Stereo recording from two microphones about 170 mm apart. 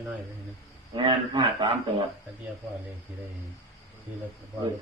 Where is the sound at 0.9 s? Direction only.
30° right (ahead or behind).